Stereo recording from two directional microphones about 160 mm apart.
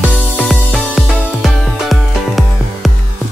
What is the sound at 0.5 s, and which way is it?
Music, centre (ahead or behind).